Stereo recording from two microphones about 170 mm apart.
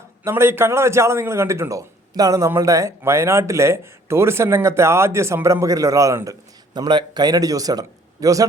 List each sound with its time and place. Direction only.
0.3 s a man's voice: 15° right (ahead or behind)